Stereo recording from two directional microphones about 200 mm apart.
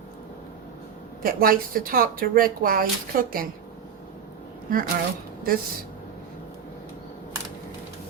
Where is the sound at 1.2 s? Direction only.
45° right (ahead or behind).